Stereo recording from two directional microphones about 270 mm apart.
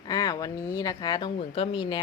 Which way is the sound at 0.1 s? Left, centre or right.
Centre.